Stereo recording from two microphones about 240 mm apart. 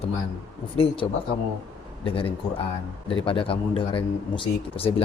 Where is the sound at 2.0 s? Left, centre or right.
Left.